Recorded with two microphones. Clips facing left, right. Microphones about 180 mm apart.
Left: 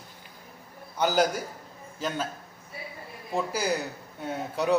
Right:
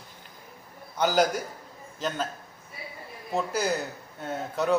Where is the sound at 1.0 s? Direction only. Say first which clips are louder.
Right 1 dB; 10° left (ahead or behind).